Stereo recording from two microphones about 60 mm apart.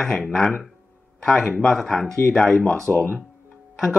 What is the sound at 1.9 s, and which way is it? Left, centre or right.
Speech, centre.